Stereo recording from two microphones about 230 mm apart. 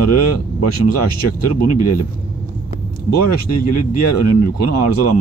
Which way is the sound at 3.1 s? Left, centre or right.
Left.